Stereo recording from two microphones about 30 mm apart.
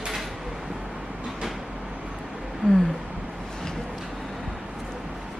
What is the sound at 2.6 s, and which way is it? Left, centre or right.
Speech, centre.